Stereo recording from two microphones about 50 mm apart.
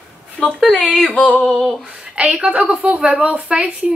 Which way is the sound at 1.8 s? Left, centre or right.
Centre.